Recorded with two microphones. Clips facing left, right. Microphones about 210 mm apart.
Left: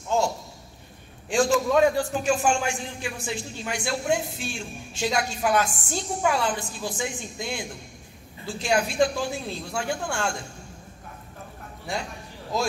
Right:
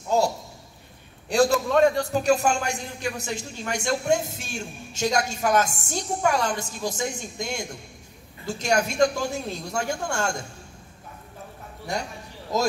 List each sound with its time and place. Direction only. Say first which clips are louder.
0.1 s a man's voice: right 2 dB; 40° right (ahead or behind)
1.3 s a man's voice: right 1 dB; 40° right (ahead or behind)
1.7 s a man's voice: right 1 dB; 5° left (ahead or behind)
2.0 s a man's voice: right 2 dB; 40° right (ahead or behind)
12.5 s a man's voice: right 3 dB; 40° right (ahead or behind)